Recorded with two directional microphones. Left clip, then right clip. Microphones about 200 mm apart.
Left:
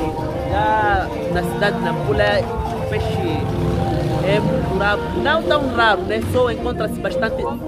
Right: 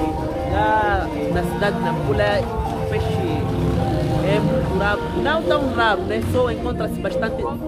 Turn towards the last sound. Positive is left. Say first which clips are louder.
# left 2 dB
turn(degrees=10)  # may be behind; listen again after turning